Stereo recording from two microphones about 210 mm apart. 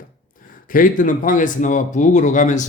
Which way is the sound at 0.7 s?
40° left (ahead or behind).